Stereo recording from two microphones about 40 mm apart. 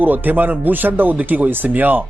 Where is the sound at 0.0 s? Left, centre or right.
Right.